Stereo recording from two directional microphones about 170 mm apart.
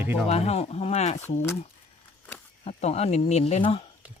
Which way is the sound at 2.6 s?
40° left (ahead or behind).